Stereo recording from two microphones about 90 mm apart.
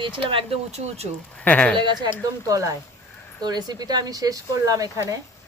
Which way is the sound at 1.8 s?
60° right (ahead or behind).